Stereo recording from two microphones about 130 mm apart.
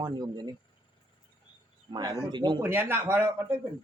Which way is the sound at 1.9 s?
35° right (ahead or behind).